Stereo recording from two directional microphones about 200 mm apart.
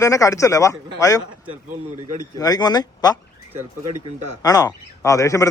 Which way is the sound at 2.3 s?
20° left (ahead or behind).